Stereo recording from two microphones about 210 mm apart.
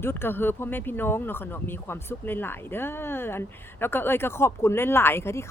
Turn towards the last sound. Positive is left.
turn(degrees=10)  # may be behind; listen again after turning